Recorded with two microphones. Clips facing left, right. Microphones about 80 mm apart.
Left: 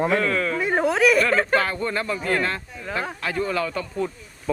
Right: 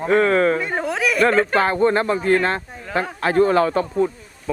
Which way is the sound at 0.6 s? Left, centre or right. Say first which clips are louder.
Left 3 dB; centre.